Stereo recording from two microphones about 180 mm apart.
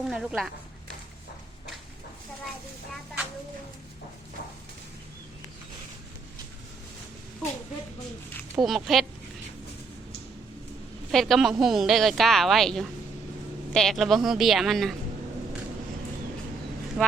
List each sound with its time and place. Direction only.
0.1 s a woman's voice: 5° right (ahead or behind)
8.5 s a woman's voice: centre (ahead or behind)
11.1 s a woman's voice: centre (ahead or behind)
17.0 s a woman's voice: 5° right (ahead or behind)